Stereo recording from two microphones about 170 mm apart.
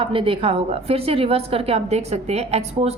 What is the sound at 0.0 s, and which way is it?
A woman's voice, 30° right (ahead or behind).